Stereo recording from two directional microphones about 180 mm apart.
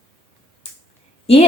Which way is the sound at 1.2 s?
35° left (ahead or behind).